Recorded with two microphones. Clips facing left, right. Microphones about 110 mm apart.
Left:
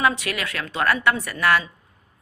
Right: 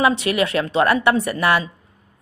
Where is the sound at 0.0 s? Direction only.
25° right (ahead or behind).